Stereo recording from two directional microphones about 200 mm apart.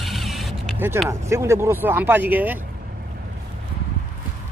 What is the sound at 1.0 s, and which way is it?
Speech, 15° right (ahead or behind).